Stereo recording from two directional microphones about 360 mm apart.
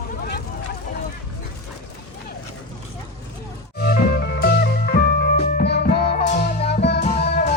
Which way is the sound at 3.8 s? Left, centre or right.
Left.